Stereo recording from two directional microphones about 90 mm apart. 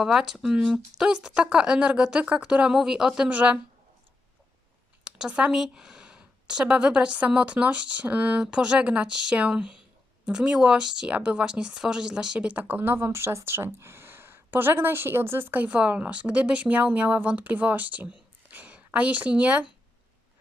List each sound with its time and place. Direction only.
0.0 s speech: 5° right (ahead or behind)
5.0 s speech: 10° right (ahead or behind)